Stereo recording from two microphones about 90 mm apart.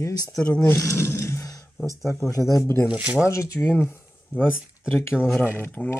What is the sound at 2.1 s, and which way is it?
Speech, 35° left (ahead or behind).